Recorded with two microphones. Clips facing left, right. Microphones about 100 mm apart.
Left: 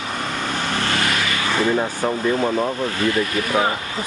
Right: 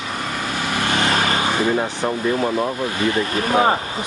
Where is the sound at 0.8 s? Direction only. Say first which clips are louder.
Right 4 dB; 20° right (ahead or behind).